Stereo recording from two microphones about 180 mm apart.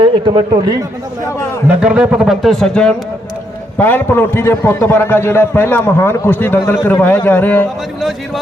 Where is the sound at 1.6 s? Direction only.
10° right (ahead or behind); by 7.7 s 10° left (ahead or behind).